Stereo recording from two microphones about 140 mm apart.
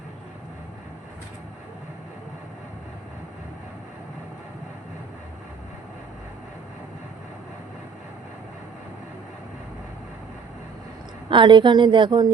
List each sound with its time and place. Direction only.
11.3 s a woman's voice: 35° right (ahead or behind)